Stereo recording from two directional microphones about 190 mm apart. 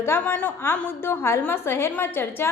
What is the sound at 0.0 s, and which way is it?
A woman's voice, 10° left (ahead or behind).